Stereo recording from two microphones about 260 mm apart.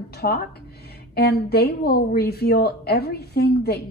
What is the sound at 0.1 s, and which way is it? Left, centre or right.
A woman's voice, left.